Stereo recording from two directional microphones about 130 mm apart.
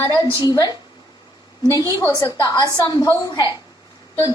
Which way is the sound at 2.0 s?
25° left (ahead or behind).